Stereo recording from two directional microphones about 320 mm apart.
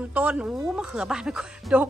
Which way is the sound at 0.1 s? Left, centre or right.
Centre.